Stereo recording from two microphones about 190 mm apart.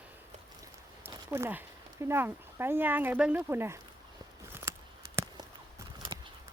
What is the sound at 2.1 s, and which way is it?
Speech, 10° right (ahead or behind).